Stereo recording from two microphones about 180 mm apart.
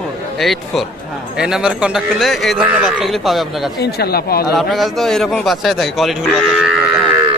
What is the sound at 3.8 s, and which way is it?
Speech, 60° left (ahead or behind).